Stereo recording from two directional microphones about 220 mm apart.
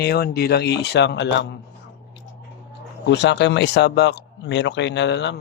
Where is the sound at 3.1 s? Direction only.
50° left (ahead or behind).